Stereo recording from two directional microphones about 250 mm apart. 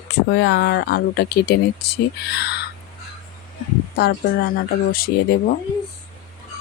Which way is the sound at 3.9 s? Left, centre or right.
Left.